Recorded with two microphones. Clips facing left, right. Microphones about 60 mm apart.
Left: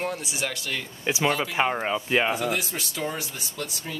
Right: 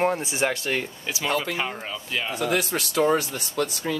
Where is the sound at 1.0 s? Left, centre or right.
Left.